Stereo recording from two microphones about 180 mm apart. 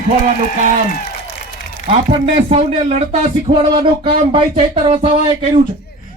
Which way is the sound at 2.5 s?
35° right (ahead or behind).